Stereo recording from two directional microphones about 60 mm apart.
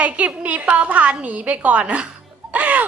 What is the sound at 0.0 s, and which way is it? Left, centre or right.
A woman's voice, right.